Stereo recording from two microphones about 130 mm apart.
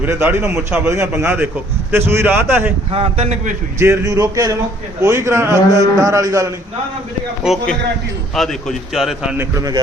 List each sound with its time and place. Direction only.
0.0 s a man's voice: 15° right (ahead or behind)
2.9 s a man's voice: 50° right (ahead or behind)
3.8 s a man's voice: 20° right (ahead or behind)
7.4 s a man's voice: centre (ahead or behind)
9.4 s a man's voice: 25° right (ahead or behind)